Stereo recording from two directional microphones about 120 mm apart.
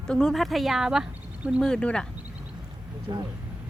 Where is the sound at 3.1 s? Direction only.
35° right (ahead or behind).